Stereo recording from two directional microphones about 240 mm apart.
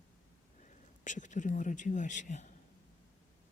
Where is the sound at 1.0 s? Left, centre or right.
Left.